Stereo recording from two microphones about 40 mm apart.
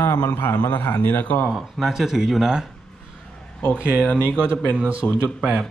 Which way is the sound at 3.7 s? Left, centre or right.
Right.